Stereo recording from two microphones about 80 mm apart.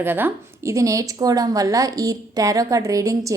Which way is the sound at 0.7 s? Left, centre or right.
Right.